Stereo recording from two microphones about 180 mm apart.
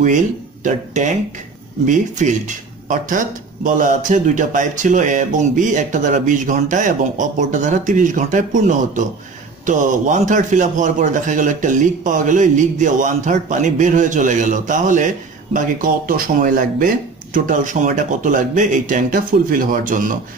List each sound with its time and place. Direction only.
0.7 s a man's voice: 40° right (ahead or behind)